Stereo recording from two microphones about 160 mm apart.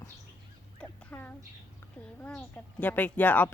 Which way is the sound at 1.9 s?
10° left (ahead or behind).